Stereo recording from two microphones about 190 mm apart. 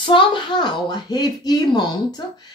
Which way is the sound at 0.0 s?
25° left (ahead or behind).